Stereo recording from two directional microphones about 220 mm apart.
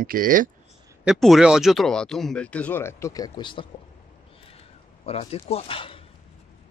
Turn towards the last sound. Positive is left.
turn(degrees=25)  # may be behind; listen again after turning